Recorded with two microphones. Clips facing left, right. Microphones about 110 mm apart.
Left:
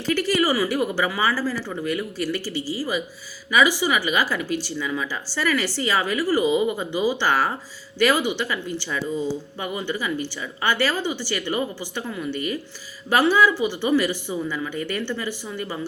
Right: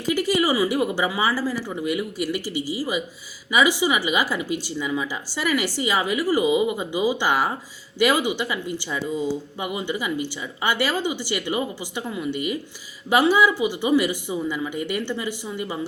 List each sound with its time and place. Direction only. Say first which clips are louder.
0.1 s speech: even; 15° right (ahead or behind)